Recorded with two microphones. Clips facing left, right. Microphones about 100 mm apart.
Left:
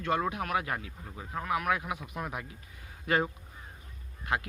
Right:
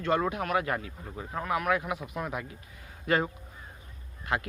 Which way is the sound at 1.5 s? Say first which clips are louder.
Right 2 dB; 10° left (ahead or behind).